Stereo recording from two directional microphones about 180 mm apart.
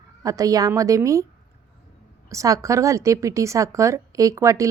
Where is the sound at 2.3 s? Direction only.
15° right (ahead or behind).